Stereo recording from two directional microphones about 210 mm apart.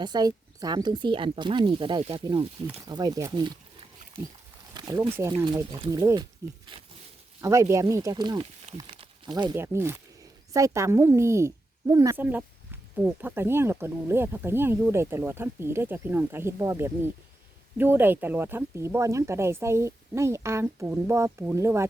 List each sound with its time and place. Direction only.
0.0 s speech: 20° right (ahead or behind)
7.4 s speech: 15° right (ahead or behind)